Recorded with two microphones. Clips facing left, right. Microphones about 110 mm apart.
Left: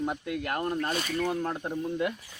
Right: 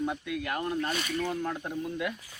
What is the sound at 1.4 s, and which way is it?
Speech, 30° left (ahead or behind).